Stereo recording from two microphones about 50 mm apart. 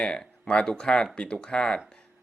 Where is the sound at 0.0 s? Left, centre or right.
Centre.